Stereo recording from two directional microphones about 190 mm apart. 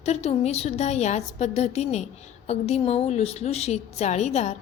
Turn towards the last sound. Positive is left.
turn(degrees=35)  # may be behind; listen again after turning